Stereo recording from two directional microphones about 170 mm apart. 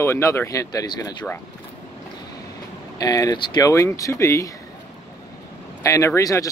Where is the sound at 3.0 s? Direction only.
20° left (ahead or behind).